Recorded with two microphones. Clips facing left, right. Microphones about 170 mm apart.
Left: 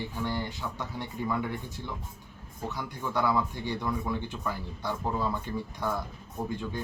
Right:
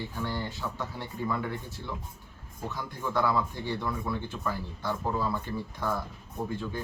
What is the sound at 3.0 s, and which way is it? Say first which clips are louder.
Speech: even; 15° left (ahead or behind).